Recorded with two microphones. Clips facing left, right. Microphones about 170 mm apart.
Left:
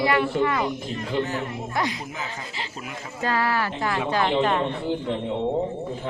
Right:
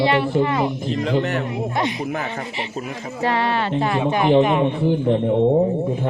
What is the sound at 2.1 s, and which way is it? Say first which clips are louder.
Speech: right 8 dB; 65° right (ahead or behind).